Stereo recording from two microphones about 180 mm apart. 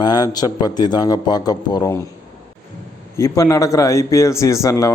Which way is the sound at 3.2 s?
15° left (ahead or behind).